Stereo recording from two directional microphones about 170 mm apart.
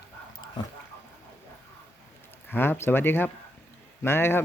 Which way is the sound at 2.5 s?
10° left (ahead or behind).